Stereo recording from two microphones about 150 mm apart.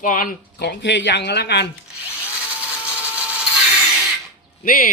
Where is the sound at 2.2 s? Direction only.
10° right (ahead or behind).